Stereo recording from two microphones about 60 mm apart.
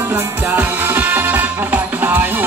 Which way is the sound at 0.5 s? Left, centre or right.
Right.